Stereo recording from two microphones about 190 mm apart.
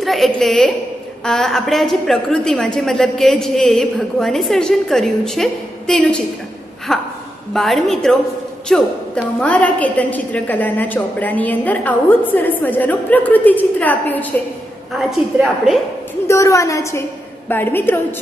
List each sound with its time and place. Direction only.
0.0 s a woman's voice: centre (ahead or behind)
16.3 s a woman's voice: 15° left (ahead or behind)